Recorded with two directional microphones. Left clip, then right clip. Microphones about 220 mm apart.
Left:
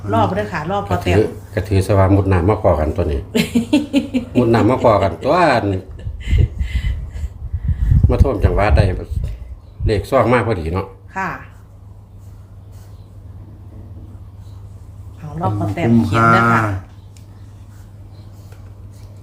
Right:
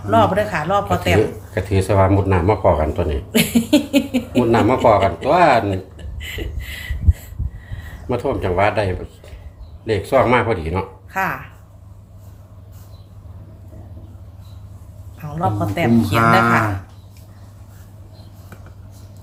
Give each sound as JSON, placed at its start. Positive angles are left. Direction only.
{"t": 0.1, "sound": "speech", "side_deg": -25}
{"t": 1.5, "sound": "speech", "side_deg": 25}
{"t": 3.3, "sound": "speech", "side_deg": -20}
{"t": 4.4, "sound": "speech", "side_deg": 25}
{"t": 5.7, "sound": "a sound", "side_deg": -30}
{"t": 8.1, "sound": "speech", "side_deg": 20}
{"t": 11.1, "sound": "speech", "side_deg": -25}
{"t": 15.4, "sound": "speech", "side_deg": -25}
{"t": 16.0, "sound": "speech", "side_deg": 0}